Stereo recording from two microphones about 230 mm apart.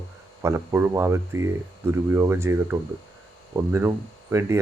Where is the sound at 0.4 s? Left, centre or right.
Centre.